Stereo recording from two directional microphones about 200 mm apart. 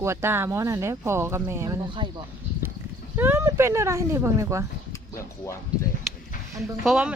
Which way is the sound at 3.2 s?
10° right (ahead or behind).